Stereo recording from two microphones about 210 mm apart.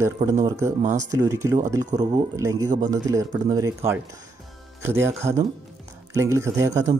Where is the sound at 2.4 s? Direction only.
15° right (ahead or behind).